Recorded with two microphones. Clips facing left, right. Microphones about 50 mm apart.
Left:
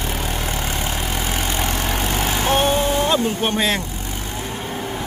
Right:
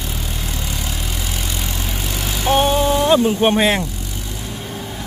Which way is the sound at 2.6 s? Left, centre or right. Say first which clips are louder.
Right 4 dB; centre.